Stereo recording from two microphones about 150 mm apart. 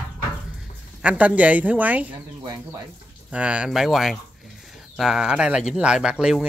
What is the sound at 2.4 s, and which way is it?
Speech, 25° right (ahead or behind).